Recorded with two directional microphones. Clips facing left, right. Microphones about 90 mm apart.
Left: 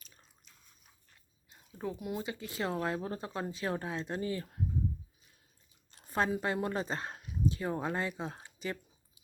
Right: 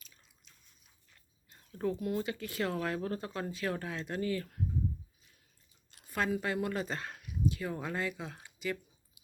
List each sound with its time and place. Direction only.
1.5 s speech: 15° left (ahead or behind)
5.9 s speech: 30° left (ahead or behind)